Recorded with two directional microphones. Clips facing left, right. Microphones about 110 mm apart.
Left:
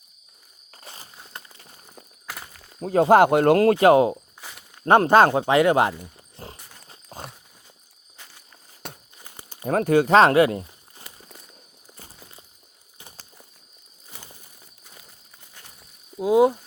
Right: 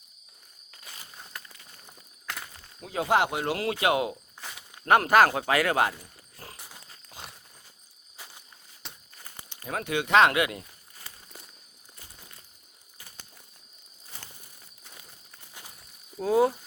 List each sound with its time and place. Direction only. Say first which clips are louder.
0.7 s walk: left 4 dB; 35° left (ahead or behind)
1.3 s clip-clop: left 4 dB; 25° left (ahead or behind)
2.2 s walk: even; 5° left (ahead or behind)
2.8 s speech: left 10 dB; 45° left (ahead or behind)
4.4 s walk: even; centre (ahead or behind)
4.9 s speech: left 5 dB; 30° left (ahead or behind)
6.0 s a sound: left 7 dB; 25° left (ahead or behind)
6.6 s dog: right 1 dB; 5° right (ahead or behind)
7.1 s walk: left 7 dB; 45° left (ahead or behind)
9.1 s crumpling: left 2 dB; 15° left (ahead or behind)
9.6 s speech: left 11 dB; 40° left (ahead or behind)
16.1 s a sound: left 5 dB; 15° left (ahead or behind)